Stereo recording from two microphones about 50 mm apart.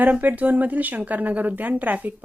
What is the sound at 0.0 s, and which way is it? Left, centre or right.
Speech, right.